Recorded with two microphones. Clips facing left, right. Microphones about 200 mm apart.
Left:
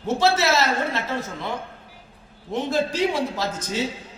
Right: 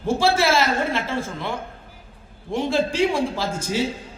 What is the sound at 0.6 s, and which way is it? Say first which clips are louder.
Speech: right 2 dB; 30° right (ahead or behind).